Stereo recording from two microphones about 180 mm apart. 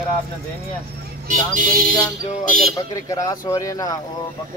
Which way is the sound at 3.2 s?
20° left (ahead or behind).